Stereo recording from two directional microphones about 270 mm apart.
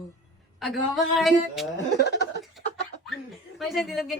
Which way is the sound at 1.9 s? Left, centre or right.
Left.